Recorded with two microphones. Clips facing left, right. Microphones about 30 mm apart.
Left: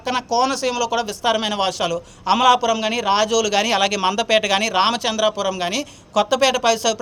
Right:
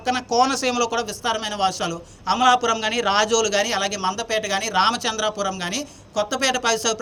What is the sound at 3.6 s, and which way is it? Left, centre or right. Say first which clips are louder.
Speech: left 5 dB; left.